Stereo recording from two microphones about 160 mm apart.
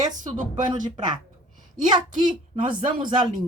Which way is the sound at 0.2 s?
50° right (ahead or behind).